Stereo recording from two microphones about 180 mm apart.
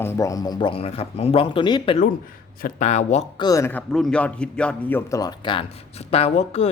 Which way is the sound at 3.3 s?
20° left (ahead or behind).